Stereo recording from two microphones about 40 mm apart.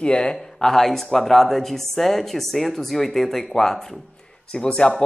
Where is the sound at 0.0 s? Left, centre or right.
Left.